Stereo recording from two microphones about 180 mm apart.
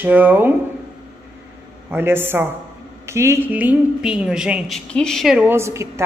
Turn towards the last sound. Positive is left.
turn(degrees=-15)  # may be behind; listen again after turning